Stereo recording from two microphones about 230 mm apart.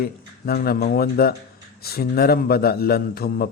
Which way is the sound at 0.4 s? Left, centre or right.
Left.